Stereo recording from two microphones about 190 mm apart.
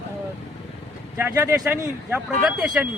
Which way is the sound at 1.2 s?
10° right (ahead or behind).